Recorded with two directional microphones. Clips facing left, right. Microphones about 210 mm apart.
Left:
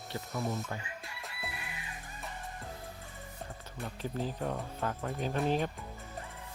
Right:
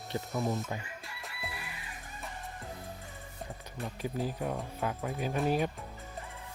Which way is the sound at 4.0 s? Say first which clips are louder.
Right 1 dB; 10° right (ahead or behind).